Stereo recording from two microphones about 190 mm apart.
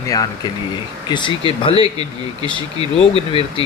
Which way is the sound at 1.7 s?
25° right (ahead or behind).